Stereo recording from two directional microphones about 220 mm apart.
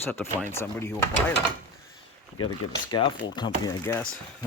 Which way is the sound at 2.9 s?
20° left (ahead or behind).